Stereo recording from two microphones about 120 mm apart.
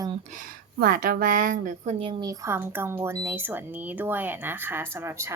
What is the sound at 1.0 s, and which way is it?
Speech, 90° right.